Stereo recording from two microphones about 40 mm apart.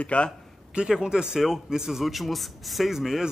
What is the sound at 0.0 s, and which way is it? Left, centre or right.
Speech, left.